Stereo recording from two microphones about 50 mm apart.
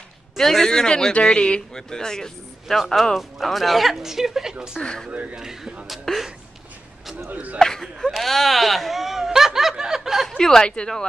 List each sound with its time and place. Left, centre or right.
0.4 s speech: centre
2.8 s speech: centre
7.2 s speech: right
7.5 s speech: centre
8.2 s snicker: centre
10.2 s speech: centre